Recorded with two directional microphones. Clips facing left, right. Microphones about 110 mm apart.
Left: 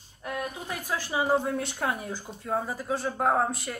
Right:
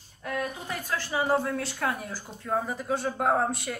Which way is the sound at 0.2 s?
15° left (ahead or behind).